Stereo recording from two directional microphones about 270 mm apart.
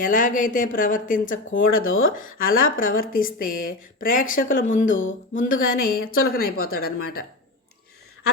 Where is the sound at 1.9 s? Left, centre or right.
Left.